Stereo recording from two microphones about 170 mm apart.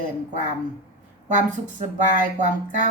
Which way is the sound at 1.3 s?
45° right (ahead or behind).